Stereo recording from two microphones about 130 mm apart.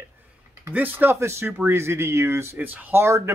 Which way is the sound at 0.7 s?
15° right (ahead or behind).